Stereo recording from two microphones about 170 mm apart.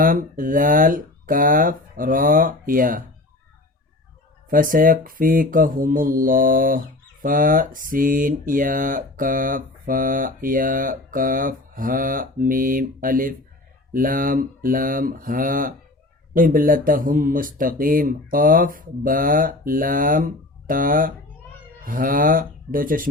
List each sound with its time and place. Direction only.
0.0 s speech: 55° right (ahead or behind)
4.4 s speech: 55° right (ahead or behind)